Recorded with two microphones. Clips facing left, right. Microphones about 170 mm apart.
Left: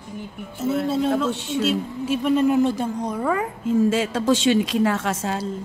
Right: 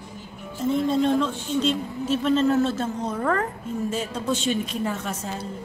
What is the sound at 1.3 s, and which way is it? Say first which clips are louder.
Speech: right 1 dB; 80° left.